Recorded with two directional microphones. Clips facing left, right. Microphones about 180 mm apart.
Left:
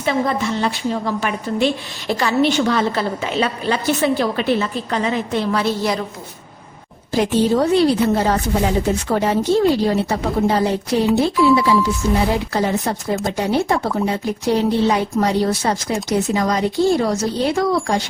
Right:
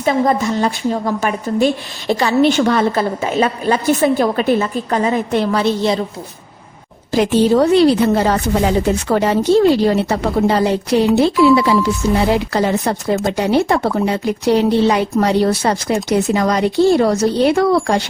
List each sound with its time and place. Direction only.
0.0 s a woman's voice: 45° right (ahead or behind)
2.0 s a woman's voice: 20° right (ahead or behind)
2.6 s a woman's voice: 50° right (ahead or behind)
5.5 s a woman's voice: 25° right (ahead or behind)
7.1 s speech: 80° right; by 18.0 s 60° right (ahead or behind)